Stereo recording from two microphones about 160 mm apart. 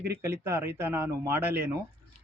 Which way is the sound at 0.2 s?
15° right (ahead or behind).